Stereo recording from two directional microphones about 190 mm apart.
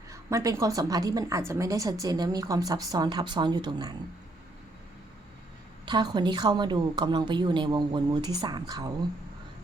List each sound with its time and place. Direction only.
0.1 s a woman's voice: 15° right (ahead or behind)
5.8 s a woman's voice: 25° right (ahead or behind)